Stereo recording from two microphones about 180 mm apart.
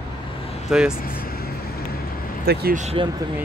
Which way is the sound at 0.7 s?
5° right (ahead or behind).